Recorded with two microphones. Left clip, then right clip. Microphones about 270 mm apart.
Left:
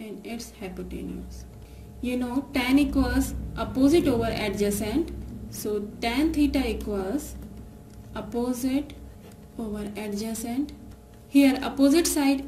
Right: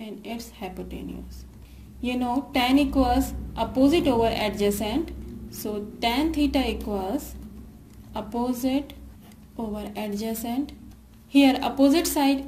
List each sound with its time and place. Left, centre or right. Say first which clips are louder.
0.0 s a woman's voice: right 1 dB; centre
2.0 s a woman's voice: right 3 dB; centre